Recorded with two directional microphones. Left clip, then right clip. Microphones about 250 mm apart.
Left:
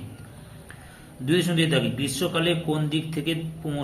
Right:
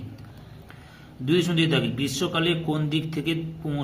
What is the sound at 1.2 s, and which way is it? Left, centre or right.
Speech, right.